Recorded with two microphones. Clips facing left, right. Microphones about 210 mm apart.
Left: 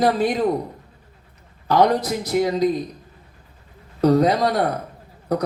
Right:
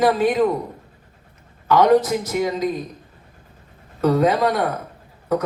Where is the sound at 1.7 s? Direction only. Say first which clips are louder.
Right 3 dB; 35° left (ahead or behind).